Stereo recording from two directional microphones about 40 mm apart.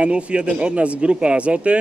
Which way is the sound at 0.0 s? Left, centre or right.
Right.